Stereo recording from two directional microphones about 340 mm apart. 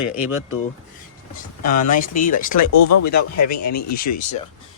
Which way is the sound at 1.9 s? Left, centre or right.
Left.